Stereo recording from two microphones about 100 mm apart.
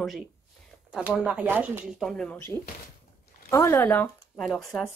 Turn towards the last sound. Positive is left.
turn(degrees=5)  # may be behind; listen again after turning